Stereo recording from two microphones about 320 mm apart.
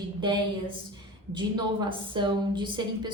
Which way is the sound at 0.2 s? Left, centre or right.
Centre.